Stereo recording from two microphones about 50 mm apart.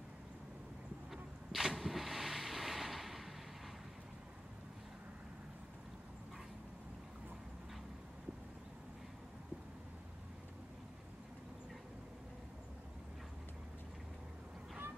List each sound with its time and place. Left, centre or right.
1.1 s vehicle: centre